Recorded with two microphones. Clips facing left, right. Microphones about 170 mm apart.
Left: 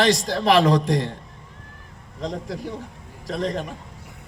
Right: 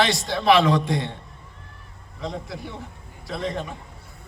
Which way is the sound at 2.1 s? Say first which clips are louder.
Left 3 dB; 40° left (ahead or behind).